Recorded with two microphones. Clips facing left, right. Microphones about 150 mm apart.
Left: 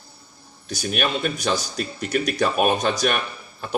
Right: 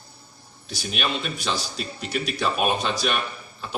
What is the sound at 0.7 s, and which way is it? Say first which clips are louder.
A man's voice: left 4 dB; 45° left (ahead or behind).